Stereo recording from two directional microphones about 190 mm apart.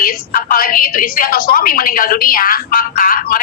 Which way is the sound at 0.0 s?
50° left (ahead or behind).